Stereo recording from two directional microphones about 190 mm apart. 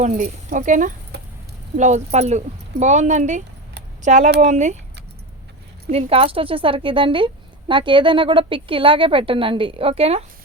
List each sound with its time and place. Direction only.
0.0 s speech: 40° right (ahead or behind)
5.9 s a woman's voice: 30° right (ahead or behind)